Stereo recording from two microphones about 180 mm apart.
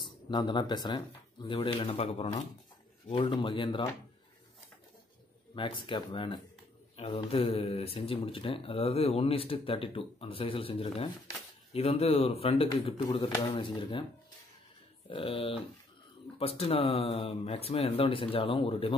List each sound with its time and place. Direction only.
0.0 s speech: 25° left (ahead or behind)
5.5 s speech: 25° left (ahead or behind)
15.0 s speech: 30° left (ahead or behind)